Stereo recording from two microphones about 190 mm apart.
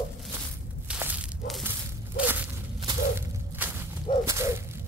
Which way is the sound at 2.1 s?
10° right (ahead or behind).